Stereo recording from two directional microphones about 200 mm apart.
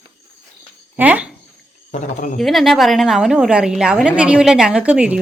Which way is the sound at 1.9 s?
40° left (ahead or behind).